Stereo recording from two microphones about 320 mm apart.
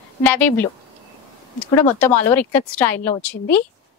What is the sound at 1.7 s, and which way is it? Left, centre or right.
A woman's voice, centre.